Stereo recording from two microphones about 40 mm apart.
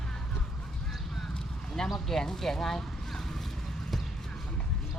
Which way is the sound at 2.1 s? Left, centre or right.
Centre.